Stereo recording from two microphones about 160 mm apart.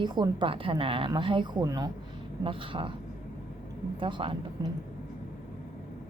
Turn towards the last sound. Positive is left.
turn(degrees=-30)  # may be behind; listen again after turning